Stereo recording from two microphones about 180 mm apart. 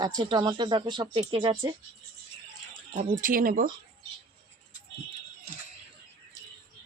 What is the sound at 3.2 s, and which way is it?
Speech, 50° right (ahead or behind).